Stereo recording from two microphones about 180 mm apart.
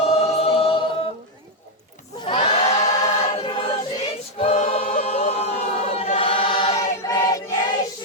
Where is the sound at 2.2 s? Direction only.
25° left (ahead or behind).